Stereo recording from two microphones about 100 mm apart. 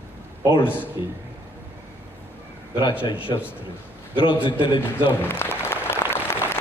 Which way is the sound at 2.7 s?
55° left (ahead or behind).